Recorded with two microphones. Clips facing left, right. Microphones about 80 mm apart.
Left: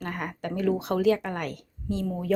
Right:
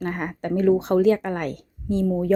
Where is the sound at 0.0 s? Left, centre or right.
Right.